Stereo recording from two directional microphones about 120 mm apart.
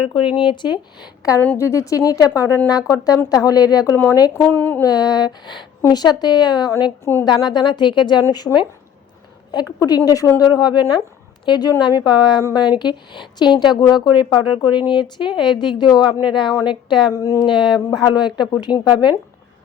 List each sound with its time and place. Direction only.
0.1 s speech: 45° left (ahead or behind)
1.4 s a woman's voice: 20° left (ahead or behind)
4.4 s speech: 15° left (ahead or behind)
4.8 s a woman's voice: 30° left (ahead or behind)
7.0 s a woman's voice: 20° left (ahead or behind)
7.3 s a woman's voice: 35° left (ahead or behind)
17.2 s a woman's voice: 25° left (ahead or behind)
17.4 s a woman's voice: 40° left (ahead or behind)